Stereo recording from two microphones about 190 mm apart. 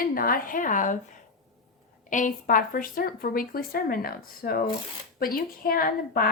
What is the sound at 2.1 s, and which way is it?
Speech, 45° left (ahead or behind).